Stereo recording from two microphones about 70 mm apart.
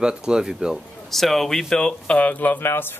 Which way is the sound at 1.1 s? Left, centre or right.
Centre.